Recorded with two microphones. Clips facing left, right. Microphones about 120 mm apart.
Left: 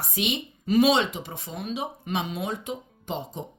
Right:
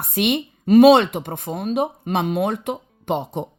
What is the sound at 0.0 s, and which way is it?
Speech, 60° right (ahead or behind).